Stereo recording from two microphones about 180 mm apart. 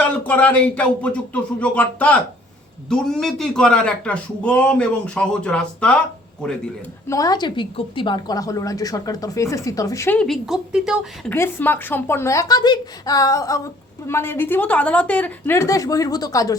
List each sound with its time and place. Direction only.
0.0 s a woman's voice: 10° left (ahead or behind)
7.1 s a woman's voice: 20° left (ahead or behind)
10.2 s speech: centre (ahead or behind)
11.3 s a woman's voice: 10° left (ahead or behind)